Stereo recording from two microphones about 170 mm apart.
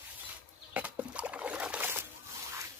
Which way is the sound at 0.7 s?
10° right (ahead or behind).